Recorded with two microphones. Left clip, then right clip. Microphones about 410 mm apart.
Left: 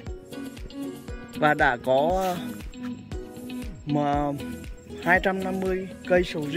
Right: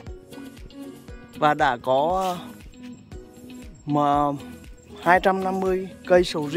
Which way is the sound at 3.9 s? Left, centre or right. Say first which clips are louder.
Right 5 dB; centre.